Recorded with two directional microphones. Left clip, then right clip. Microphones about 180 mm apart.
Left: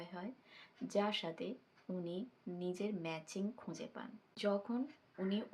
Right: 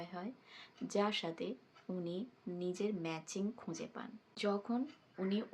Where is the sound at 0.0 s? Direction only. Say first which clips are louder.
Right 2 dB; 10° right (ahead or behind).